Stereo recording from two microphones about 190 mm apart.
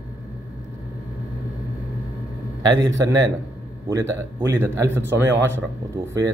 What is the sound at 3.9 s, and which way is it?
A man's voice, 15° right (ahead or behind).